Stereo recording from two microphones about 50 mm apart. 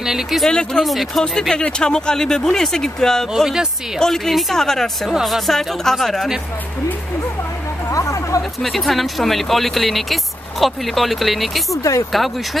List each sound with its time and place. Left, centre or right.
0.0 s speech: centre
0.5 s speech: centre
0.8 s speech: centre
1.5 s speech: centre
3.3 s speech: centre
4.0 s speech: centre
7.9 s a sound: left
8.6 s speech: centre
11.7 s speech: left